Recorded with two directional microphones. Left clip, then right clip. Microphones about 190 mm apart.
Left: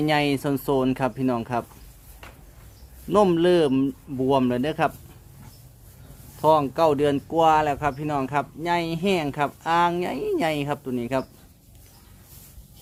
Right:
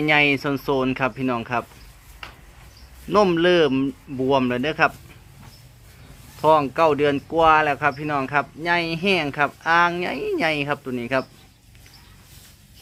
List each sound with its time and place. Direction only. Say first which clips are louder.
0.0 s speech: right 4 dB; 15° left (ahead or behind)
3.1 s speech: right 2 dB; 15° left (ahead or behind)
6.4 s speech: right 2 dB; 15° left (ahead or behind)